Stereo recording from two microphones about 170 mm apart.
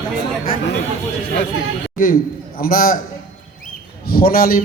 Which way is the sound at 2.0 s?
55° left (ahead or behind).